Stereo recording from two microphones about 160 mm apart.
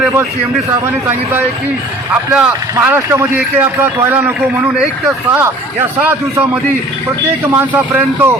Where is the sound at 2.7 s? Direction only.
15° right (ahead or behind).